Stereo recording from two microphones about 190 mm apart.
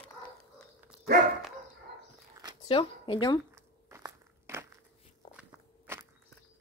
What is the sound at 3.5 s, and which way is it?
Biting, 15° right (ahead or behind).